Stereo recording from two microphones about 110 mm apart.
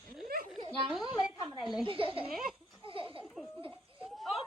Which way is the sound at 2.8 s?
55° right (ahead or behind).